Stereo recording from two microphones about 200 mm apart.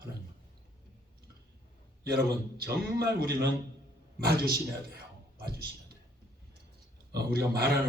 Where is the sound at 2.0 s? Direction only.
50° right (ahead or behind).